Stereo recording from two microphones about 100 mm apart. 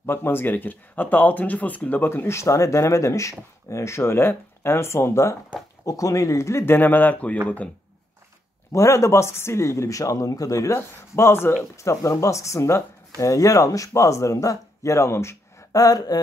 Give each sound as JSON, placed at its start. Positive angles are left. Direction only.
{"t": 0.0, "sound": "speech", "side_deg": 25}
{"t": 8.7, "sound": "speech", "side_deg": 30}